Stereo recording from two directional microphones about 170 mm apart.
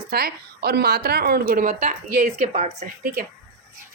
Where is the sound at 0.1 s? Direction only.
65° right (ahead or behind); by 2.9 s 40° right (ahead or behind).